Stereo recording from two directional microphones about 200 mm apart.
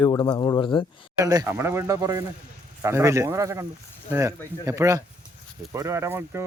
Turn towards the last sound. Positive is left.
turn(degrees=-10)  # may be behind; listen again after turning